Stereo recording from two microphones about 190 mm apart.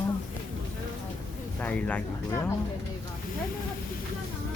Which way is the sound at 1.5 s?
10° left (ahead or behind).